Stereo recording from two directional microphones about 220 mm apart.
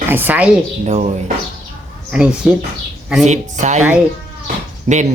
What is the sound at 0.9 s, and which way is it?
Speech, 30° right (ahead or behind).